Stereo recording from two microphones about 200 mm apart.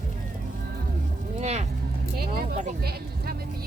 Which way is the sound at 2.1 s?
50° right (ahead or behind).